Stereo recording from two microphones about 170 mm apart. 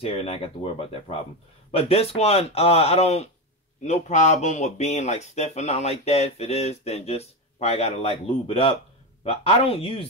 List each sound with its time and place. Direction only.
0.0 s speech: 35° left (ahead or behind)